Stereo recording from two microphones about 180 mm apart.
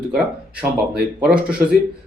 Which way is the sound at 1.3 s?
5° right (ahead or behind).